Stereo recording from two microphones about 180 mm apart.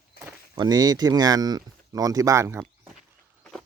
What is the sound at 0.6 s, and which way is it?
Speech, 20° right (ahead or behind).